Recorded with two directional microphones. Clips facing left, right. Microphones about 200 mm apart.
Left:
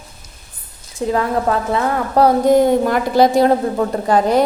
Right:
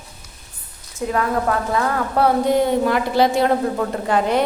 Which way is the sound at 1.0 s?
30° left (ahead or behind).